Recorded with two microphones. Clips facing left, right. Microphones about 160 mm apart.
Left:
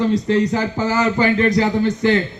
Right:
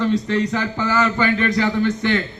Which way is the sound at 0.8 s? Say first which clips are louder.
Left 1 dB; 15° left (ahead or behind).